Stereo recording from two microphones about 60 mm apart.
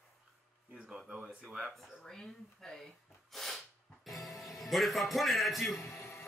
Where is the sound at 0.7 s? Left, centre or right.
Centre.